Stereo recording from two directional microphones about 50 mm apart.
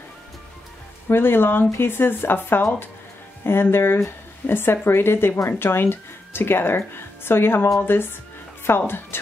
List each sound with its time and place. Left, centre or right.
1.0 s speech: left